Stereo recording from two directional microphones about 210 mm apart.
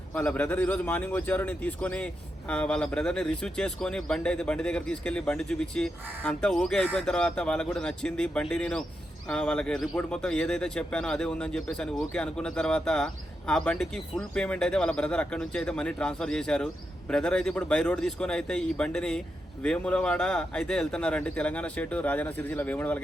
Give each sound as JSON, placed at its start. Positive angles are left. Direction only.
{"t": 0.1, "sound": "speech", "side_deg": 5}